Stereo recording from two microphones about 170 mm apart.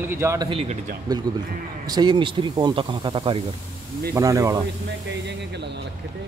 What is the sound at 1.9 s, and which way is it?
Speech, 25° right (ahead or behind).